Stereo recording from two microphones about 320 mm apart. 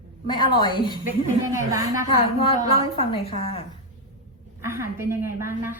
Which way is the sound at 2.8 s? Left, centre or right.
Centre.